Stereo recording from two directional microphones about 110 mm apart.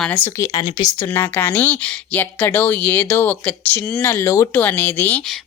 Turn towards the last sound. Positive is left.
turn(degrees=15)  # may be behind; listen again after turning